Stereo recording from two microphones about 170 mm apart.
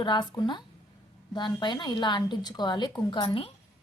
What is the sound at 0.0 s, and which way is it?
A woman's voice, 25° left (ahead or behind).